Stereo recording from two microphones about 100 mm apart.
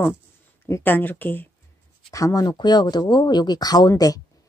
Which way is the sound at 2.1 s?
35° left (ahead or behind).